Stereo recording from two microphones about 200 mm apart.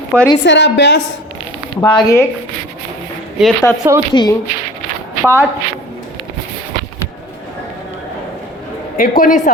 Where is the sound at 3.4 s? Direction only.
5° right (ahead or behind).